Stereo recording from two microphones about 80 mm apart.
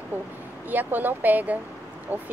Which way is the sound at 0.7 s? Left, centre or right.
Right.